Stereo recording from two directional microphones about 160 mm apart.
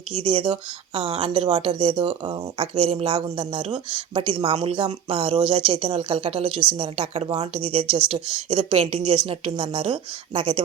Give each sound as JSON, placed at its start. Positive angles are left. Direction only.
{"t": 0.1, "sound": "speech", "side_deg": -30}